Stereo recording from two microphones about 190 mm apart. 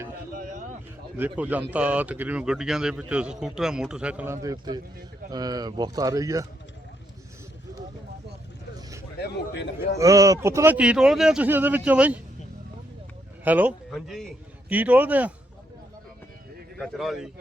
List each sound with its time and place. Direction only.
0.3 s a sound: 45° right (ahead or behind)
1.1 s a man's voice: 10° right (ahead or behind)
9.1 s a man's voice: 60° left (ahead or behind)
10.0 s a man's voice: 15° right (ahead or behind)
13.4 s a man's voice: 10° right (ahead or behind)
16.7 s a man's voice: centre (ahead or behind)